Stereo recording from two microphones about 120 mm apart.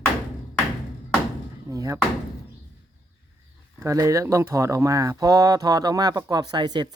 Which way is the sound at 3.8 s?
25° right (ahead or behind).